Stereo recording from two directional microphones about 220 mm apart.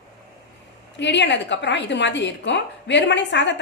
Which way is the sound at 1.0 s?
55° left (ahead or behind).